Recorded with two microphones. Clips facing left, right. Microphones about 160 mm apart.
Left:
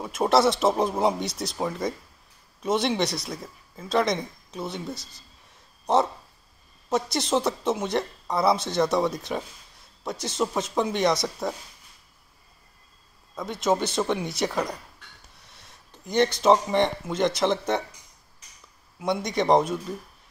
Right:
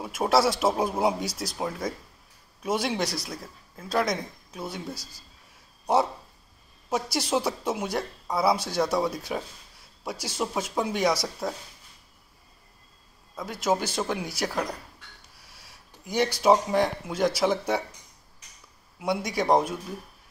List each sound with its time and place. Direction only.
0.0 s speech: 5° right (ahead or behind)
4.9 s a man's voice: 25° left (ahead or behind)
6.9 s a woman's voice: 5° right (ahead or behind)
13.4 s a woman's voice: 5° right (ahead or behind)
15.3 s a sound: 5° right (ahead or behind)
16.0 s a woman's voice: 10° right (ahead or behind)
18.9 s speech: 5° right (ahead or behind)